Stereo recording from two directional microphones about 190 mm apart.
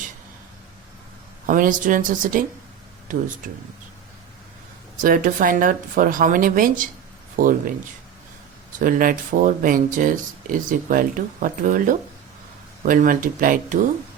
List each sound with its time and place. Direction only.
1.5 s speech: 45° right (ahead or behind)
4.9 s speech: 45° right (ahead or behind)
8.8 s speech: 45° right (ahead or behind)